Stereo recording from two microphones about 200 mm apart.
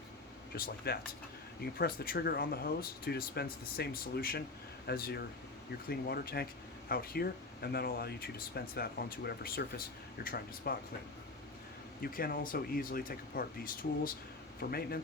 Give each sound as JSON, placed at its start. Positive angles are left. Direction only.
{"t": 0.5, "sound": "speech", "side_deg": 50}
{"t": 12.0, "sound": "speech", "side_deg": 45}
{"t": 14.6, "sound": "speech", "side_deg": 50}